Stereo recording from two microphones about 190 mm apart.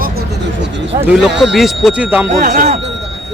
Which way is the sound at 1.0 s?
5° right (ahead or behind).